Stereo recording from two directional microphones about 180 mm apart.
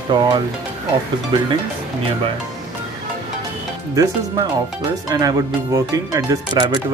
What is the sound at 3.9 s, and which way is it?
Speech, 20° right (ahead or behind).